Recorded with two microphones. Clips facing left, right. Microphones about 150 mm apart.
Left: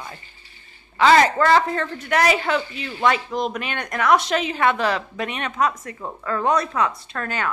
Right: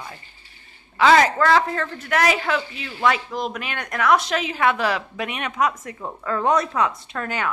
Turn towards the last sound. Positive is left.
turn(degrees=-15)  # may be behind; listen again after turning